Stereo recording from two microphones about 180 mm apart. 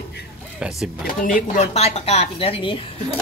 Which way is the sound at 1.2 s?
45° left (ahead or behind).